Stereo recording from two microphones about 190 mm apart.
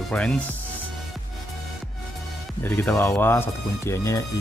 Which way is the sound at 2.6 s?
10° left (ahead or behind).